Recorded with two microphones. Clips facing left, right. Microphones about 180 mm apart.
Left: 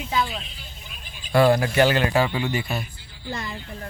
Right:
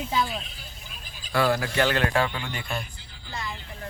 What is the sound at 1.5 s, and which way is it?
A man's voice, 10° left (ahead or behind).